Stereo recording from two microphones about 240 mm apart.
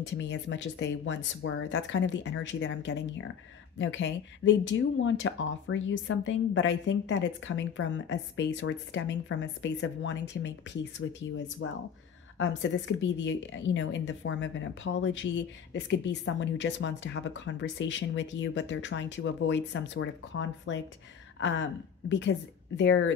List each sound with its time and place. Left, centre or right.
0.0 s a woman's voice: left
21.4 s a sound: left
22.1 s a woman's voice: left